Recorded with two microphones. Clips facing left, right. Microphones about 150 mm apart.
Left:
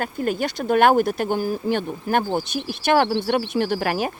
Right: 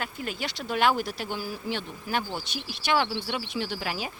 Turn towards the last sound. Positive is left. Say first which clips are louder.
# left 10 dB
turn(degrees=55)  # may be behind; listen again after turning